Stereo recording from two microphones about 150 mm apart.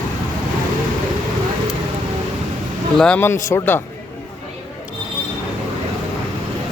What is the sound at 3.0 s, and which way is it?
Speech, 10° left (ahead or behind).